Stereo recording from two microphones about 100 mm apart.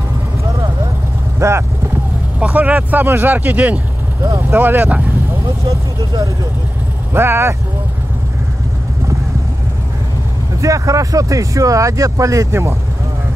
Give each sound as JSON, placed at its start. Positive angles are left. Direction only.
{"t": 1.4, "sound": "speech", "side_deg": -30}
{"t": 2.4, "sound": "speech", "side_deg": -15}
{"t": 4.2, "sound": "speech", "side_deg": -25}
{"t": 5.7, "sound": "speech", "side_deg": -35}
{"t": 7.2, "sound": "speech", "side_deg": -25}
{"t": 10.6, "sound": "speech", "side_deg": -35}